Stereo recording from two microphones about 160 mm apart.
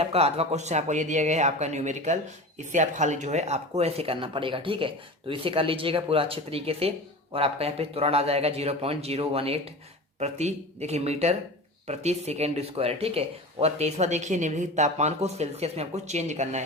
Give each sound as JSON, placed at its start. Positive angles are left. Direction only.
{"t": 0.0, "sound": "speech", "side_deg": -40}